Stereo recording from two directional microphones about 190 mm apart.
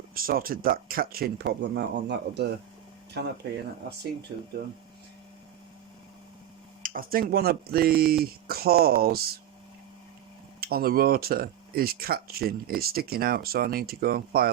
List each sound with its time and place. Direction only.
0.1 s speech: 50° right (ahead or behind)
6.8 s speech: 50° right (ahead or behind)
10.6 s speech: 55° right (ahead or behind)